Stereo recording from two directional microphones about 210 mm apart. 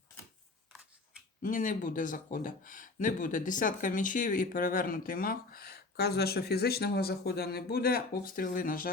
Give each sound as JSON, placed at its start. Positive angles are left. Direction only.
{"t": 1.4, "sound": "speech", "side_deg": 40}